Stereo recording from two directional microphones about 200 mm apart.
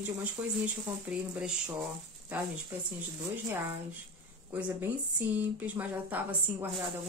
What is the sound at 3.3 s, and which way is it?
Speech, 10° right (ahead or behind).